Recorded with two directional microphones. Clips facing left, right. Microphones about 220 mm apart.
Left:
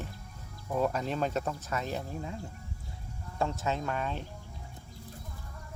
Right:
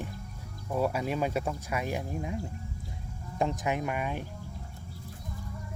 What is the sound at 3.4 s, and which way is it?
Speech, 15° right (ahead or behind).